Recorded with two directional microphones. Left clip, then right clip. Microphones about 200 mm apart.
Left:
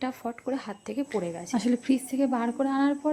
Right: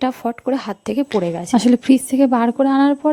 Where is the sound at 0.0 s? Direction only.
40° right (ahead or behind).